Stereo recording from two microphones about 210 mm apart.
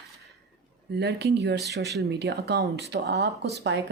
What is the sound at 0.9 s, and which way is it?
Speech, 50° right (ahead or behind).